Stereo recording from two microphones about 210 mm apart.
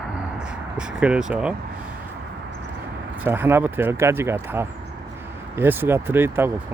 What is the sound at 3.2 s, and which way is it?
Speech, 10° right (ahead or behind).